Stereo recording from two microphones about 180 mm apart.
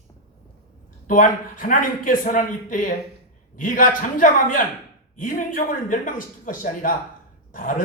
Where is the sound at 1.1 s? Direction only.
50° left (ahead or behind).